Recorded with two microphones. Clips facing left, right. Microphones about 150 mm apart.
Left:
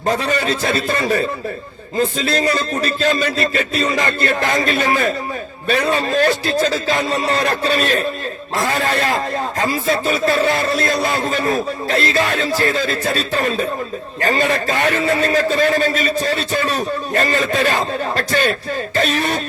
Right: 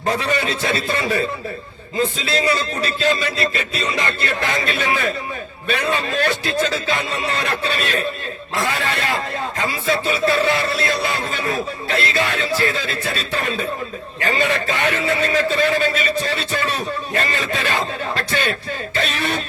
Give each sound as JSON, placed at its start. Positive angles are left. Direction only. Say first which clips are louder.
{"t": 0.1, "sound": "speech", "louder": "left 2 dB", "side_deg": 40}
{"t": 2.0, "sound": "music", "louder": "left 3 dB", "side_deg": 45}
{"t": 5.6, "sound": "speech", "louder": "left 4 dB", "side_deg": 35}
{"t": 18.9, "sound": "music", "louder": "left 4 dB", "side_deg": 40}